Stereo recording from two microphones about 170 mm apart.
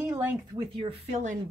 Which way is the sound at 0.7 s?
40° right (ahead or behind).